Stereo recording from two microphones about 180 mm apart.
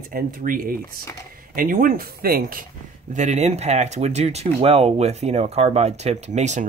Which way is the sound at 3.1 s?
40° right (ahead or behind).